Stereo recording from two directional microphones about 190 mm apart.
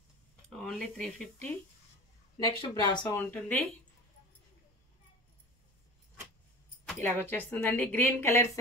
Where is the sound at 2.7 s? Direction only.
20° left (ahead or behind).